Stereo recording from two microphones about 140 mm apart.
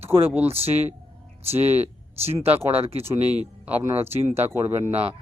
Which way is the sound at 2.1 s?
45° right (ahead or behind).